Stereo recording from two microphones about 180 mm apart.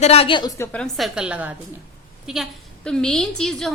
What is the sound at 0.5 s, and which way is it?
A woman's voice, 10° left (ahead or behind).